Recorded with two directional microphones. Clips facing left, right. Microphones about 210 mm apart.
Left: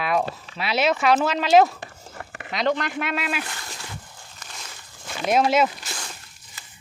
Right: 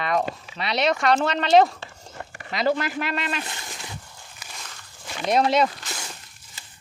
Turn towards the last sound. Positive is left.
turn(degrees=5)  # may be behind; listen again after turning